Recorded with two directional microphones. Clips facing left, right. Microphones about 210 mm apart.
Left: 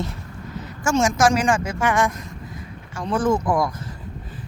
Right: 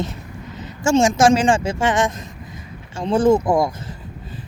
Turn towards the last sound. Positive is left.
turn(degrees=-25)  # may be behind; listen again after turning